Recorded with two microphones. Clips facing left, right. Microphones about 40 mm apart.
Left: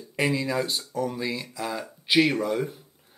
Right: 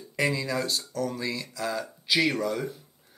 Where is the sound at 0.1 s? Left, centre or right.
Centre.